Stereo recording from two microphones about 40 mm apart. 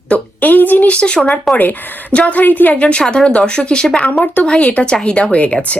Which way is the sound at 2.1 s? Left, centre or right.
Left.